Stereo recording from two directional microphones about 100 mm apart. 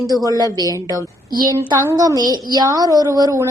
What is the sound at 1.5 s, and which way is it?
A woman's voice, 35° right (ahead or behind).